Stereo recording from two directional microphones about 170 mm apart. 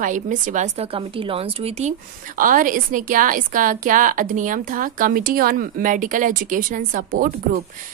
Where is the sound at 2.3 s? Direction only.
55° right (ahead or behind).